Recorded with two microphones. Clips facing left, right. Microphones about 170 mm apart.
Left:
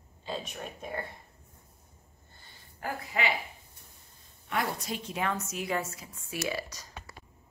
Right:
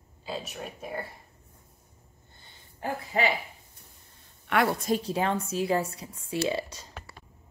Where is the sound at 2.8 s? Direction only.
30° right (ahead or behind).